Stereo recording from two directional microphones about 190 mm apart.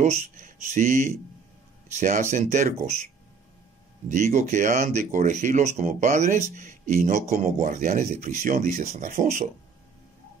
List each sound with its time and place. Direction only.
0.0 s speech: 35° right (ahead or behind)
4.1 s speech: 40° right (ahead or behind)